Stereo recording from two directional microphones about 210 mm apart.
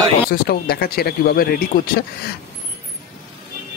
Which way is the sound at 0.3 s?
45° left (ahead or behind).